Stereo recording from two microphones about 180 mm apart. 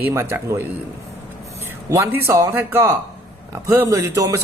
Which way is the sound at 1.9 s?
15° right (ahead or behind).